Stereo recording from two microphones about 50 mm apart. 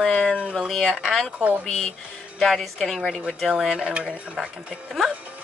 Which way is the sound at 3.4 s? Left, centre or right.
Centre.